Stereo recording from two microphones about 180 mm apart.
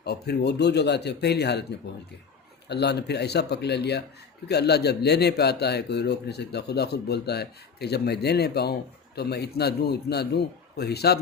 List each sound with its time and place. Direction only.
0.0 s speech: 65° left (ahead or behind)
2.6 s a man's voice: 65° left (ahead or behind)